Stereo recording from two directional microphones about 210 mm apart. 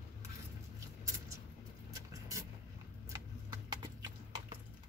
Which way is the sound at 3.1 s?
20° right (ahead or behind).